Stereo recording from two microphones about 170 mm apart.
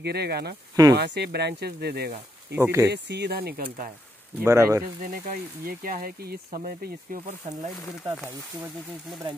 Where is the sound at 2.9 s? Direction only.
80° right.